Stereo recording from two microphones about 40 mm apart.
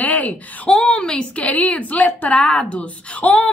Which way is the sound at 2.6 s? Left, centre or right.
Left.